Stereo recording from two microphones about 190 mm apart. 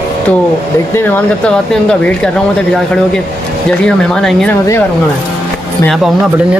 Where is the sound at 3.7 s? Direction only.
5° left (ahead or behind).